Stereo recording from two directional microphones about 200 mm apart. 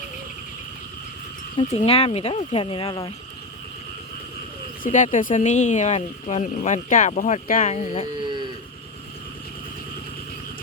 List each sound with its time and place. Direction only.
1.5 s speech: 30° left (ahead or behind)
4.8 s speech: 40° left (ahead or behind)
8.2 s a sound: 25° right (ahead or behind)